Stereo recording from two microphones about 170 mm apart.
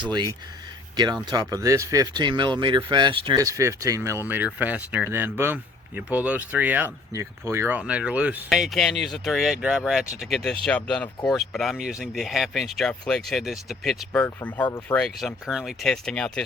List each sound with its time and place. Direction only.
0.0 s speech: 25° right (ahead or behind); by 15.0 s 10° left (ahead or behind)
15.4 s speech: 5° right (ahead or behind)